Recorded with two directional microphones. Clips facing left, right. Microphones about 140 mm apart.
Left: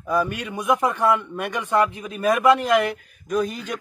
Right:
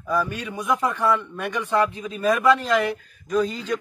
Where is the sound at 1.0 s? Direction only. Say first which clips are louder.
Left 2 dB; 15° left (ahead or behind).